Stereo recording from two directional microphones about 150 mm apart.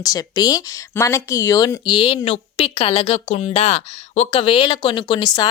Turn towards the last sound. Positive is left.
turn(degrees=30)  # may be behind; listen again after turning